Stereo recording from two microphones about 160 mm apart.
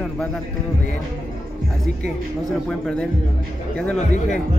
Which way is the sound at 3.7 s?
5° left (ahead or behind).